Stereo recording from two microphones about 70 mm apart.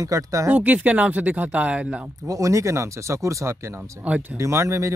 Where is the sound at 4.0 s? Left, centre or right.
Right.